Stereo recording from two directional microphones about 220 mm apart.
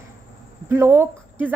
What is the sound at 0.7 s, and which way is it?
Speech, 10° right (ahead or behind).